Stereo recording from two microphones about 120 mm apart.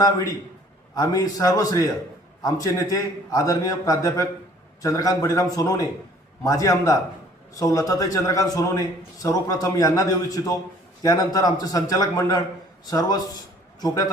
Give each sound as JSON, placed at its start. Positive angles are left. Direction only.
{"t": 0.0, "sound": "a man's voice", "side_deg": 25}